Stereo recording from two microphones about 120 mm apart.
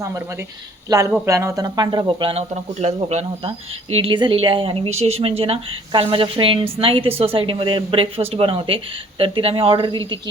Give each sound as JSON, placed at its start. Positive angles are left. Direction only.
{"t": 0.9, "sound": "speech", "side_deg": -30}
{"t": 2.8, "sound": "speech", "side_deg": -65}